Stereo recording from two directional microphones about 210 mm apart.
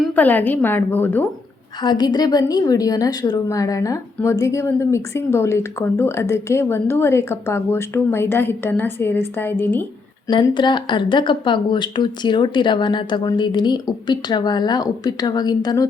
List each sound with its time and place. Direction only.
0.0 s a woman's voice: 5° left (ahead or behind)
1.8 s a woman's voice: 20° left (ahead or behind)
10.2 s speech: 20° left (ahead or behind)